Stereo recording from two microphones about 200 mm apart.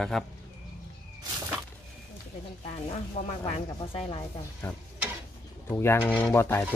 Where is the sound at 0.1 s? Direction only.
Centre (ahead or behind).